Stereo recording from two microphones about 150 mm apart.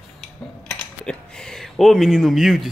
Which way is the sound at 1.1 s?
5° left (ahead or behind).